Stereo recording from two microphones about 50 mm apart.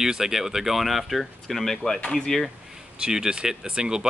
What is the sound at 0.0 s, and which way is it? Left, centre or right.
Speech, centre.